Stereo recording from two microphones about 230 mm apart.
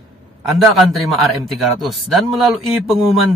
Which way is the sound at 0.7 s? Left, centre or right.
Centre.